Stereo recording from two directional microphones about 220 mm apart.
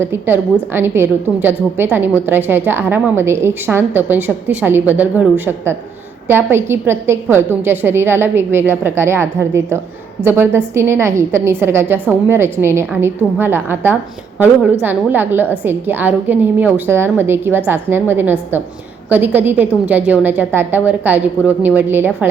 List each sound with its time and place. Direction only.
0.0 s a woman's voice: 10° right (ahead or behind)